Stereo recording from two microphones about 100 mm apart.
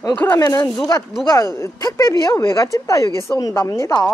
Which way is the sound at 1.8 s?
35° left (ahead or behind).